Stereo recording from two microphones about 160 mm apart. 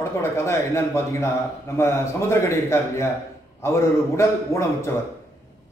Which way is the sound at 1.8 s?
15° left (ahead or behind).